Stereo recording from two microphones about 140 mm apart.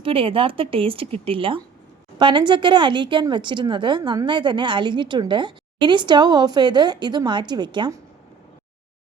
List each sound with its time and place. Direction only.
0.0 s a woman's voice: 40° right (ahead or behind)